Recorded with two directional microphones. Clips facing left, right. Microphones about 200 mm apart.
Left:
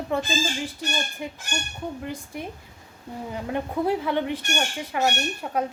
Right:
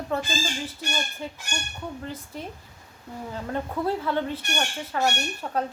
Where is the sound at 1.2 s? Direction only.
15° left (ahead or behind).